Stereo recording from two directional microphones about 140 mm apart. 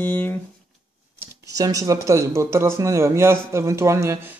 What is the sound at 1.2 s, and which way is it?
Speech, 25° right (ahead or behind).